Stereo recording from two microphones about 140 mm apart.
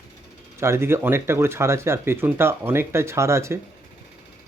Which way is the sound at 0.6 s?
20° right (ahead or behind).